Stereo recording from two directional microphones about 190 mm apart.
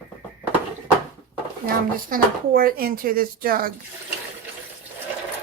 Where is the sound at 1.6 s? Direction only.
50° right (ahead or behind).